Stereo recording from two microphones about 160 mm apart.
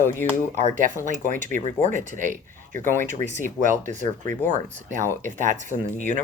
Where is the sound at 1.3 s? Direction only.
50° right (ahead or behind).